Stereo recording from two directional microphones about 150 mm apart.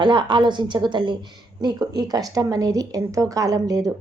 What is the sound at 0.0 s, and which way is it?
A woman's voice, 30° right (ahead or behind).